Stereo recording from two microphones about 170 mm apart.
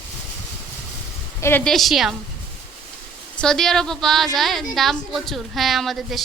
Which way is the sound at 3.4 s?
5° left (ahead or behind).